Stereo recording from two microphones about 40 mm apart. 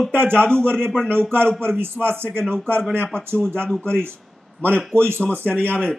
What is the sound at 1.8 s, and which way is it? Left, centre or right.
Speech, right.